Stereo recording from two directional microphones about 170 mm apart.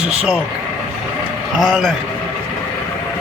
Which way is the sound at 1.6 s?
Centre (ahead or behind).